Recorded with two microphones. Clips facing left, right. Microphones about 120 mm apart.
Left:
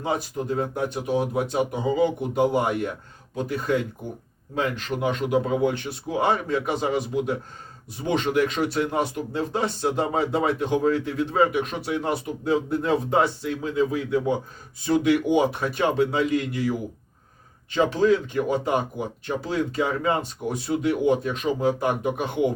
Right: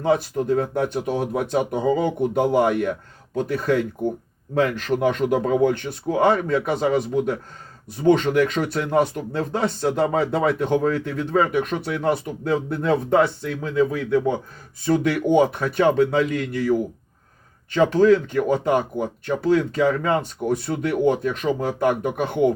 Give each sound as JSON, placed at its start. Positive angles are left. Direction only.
{"t": 0.0, "sound": "speech", "side_deg": -55}